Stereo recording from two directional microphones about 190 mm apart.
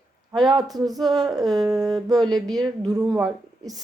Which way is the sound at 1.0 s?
20° right (ahead or behind).